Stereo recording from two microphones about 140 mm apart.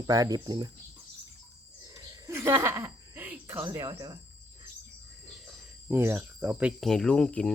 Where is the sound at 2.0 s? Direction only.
20° right (ahead or behind).